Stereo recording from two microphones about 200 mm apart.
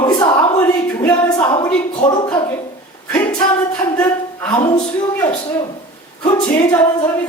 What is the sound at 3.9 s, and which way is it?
A woman's voice, 10° left (ahead or behind).